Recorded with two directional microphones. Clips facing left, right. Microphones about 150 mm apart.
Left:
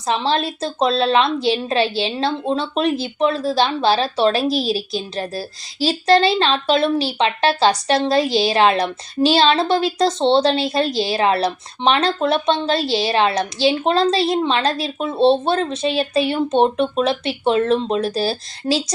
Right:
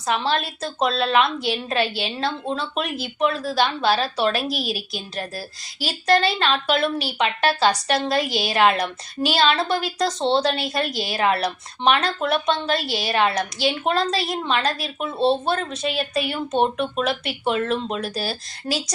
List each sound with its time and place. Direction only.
0.0 s a woman's voice: 25° left (ahead or behind)